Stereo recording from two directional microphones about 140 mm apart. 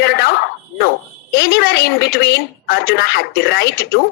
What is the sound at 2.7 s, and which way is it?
Speech, 90° left.